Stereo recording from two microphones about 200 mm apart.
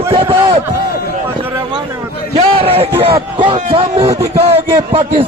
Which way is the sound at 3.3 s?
25° right (ahead or behind).